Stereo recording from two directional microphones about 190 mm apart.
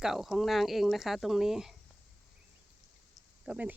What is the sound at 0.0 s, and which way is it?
Speech, centre (ahead or behind).